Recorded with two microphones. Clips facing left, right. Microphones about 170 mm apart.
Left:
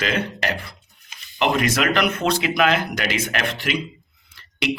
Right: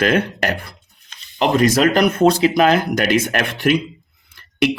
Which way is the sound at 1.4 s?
35° right (ahead or behind).